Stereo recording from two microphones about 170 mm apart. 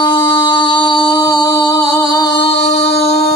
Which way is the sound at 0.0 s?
30° left (ahead or behind).